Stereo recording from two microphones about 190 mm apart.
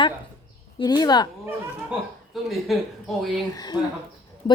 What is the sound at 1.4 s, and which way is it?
Speech, 5° right (ahead or behind).